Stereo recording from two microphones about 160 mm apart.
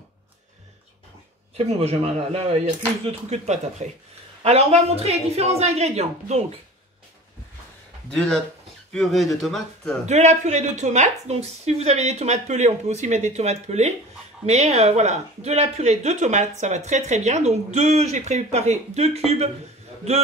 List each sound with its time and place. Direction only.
1.7 s a man's voice: 40° right (ahead or behind)
8.9 s speech: centre (ahead or behind)
10.0 s speech: 45° right (ahead or behind)